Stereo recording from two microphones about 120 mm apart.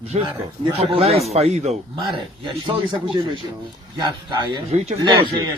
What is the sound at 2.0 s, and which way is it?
Speech, 45° right (ahead or behind).